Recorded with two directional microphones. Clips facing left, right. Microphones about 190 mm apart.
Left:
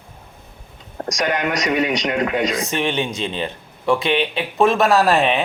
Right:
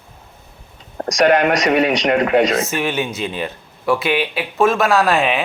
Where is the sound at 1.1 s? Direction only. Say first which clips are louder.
Right 8 dB; 60° right (ahead or behind).